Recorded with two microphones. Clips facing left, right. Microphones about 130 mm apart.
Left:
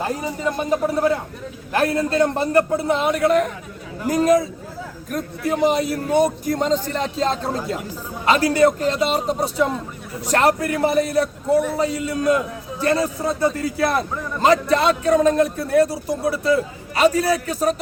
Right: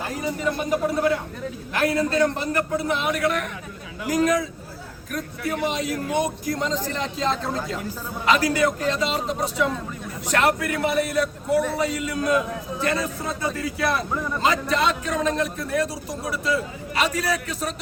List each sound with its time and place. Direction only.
1.7 s a man's voice: 30° left (ahead or behind)